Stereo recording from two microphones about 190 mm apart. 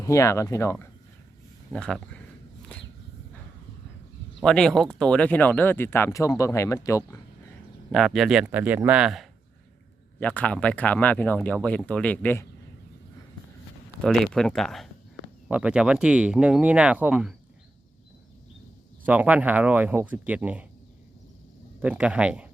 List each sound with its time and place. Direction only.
0.0 s speech: 15° left (ahead or behind)
1.7 s speech: 5° left (ahead or behind)
4.4 s speech: 5° left (ahead or behind)
7.9 s speech: centre (ahead or behind)
10.2 s speech: 10° left (ahead or behind)
14.0 s speech: 5° left (ahead or behind)
19.0 s speech: 10° right (ahead or behind)
21.8 s speech: 5° right (ahead or behind)